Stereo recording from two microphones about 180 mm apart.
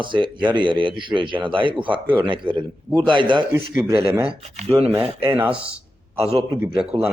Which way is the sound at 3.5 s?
15° right (ahead or behind).